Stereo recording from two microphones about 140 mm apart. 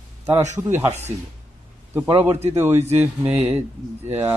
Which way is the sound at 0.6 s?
15° right (ahead or behind).